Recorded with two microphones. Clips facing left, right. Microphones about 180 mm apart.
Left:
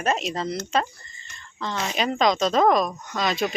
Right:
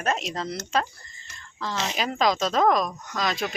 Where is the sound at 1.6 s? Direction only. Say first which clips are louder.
Left 2 dB; centre (ahead or behind).